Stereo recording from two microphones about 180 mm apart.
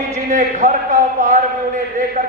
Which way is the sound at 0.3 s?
50° right (ahead or behind).